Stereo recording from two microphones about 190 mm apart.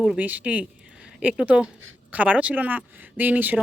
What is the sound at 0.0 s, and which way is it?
A woman's voice, 5° right (ahead or behind).